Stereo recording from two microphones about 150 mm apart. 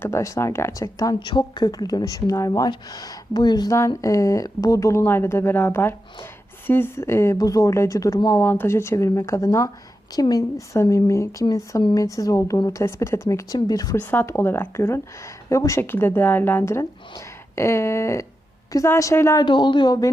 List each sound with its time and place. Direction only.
0.0 s speech: 20° left (ahead or behind)
14.0 s speech: 10° left (ahead or behind)
19.5 s speech: 30° left (ahead or behind)